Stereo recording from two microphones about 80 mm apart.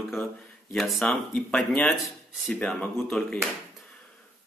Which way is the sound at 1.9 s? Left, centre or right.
Centre.